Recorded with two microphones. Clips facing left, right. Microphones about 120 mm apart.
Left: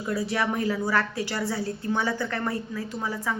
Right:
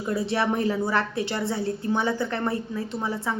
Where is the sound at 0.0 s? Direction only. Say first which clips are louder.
Right 2 dB; 25° right (ahead or behind).